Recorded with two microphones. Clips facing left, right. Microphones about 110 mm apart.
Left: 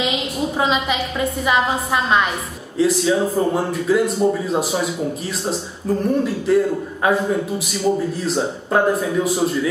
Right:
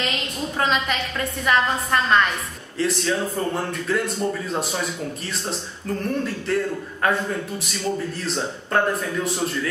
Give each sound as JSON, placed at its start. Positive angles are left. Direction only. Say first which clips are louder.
{"t": 0.0, "sound": "a woman's voice", "louder": "left 6 dB", "side_deg": 5}